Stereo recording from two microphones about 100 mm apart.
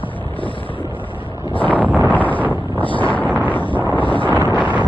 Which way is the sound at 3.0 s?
15° left (ahead or behind).